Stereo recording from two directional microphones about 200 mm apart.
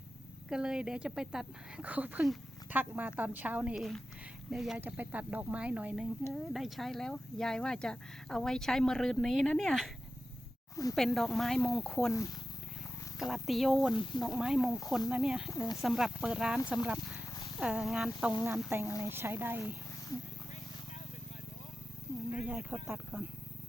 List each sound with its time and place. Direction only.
0.5 s speech: 5° right (ahead or behind)
10.9 s speech: centre (ahead or behind)
13.1 s speech: centre (ahead or behind)
18.3 s speech: 15° right (ahead or behind)
18.9 s speech: 20° left (ahead or behind)
19.1 s speech: 10° right (ahead or behind)
22.4 s speech: 10° right (ahead or behind)